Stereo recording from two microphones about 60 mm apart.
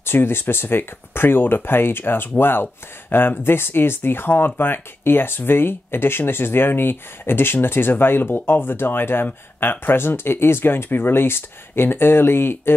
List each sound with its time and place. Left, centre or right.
0.0 s speech: left